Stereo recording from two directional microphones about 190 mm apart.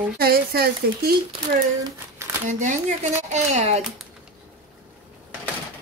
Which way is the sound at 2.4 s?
40° right (ahead or behind).